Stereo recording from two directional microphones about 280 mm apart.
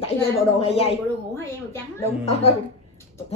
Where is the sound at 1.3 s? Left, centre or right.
Centre.